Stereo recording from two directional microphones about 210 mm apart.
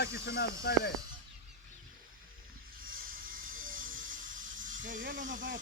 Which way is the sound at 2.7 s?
45° right (ahead or behind).